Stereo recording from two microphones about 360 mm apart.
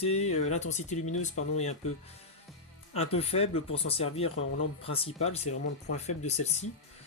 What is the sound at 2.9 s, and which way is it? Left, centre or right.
Speech, centre.